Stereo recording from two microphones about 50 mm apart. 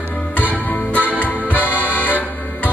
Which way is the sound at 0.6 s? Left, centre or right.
Left.